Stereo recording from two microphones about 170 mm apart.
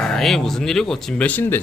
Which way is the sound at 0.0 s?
5° left (ahead or behind).